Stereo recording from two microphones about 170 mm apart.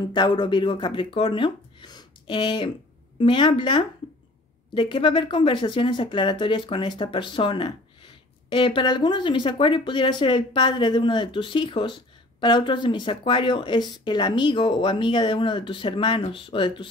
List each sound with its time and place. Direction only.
0.1 s speech: 25° left (ahead or behind)